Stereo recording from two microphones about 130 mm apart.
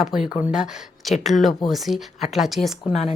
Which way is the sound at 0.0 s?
5° right (ahead or behind).